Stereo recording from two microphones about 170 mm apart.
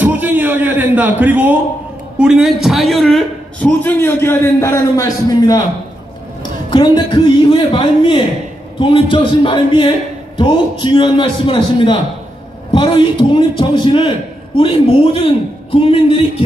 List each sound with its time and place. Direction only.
0.0 s music: 10° right (ahead or behind)
2.1 s a man's voice: 5° right (ahead or behind)
3.8 s a man's voice: 15° left (ahead or behind)
6.7 s a man's voice: 30° left (ahead or behind)